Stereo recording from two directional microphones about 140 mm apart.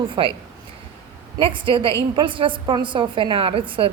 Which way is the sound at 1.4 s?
35° right (ahead or behind).